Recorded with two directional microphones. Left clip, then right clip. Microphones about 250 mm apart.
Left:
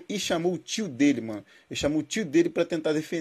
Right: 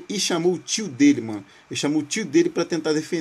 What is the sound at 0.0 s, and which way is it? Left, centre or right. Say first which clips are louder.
Speech: right 5 dB; centre.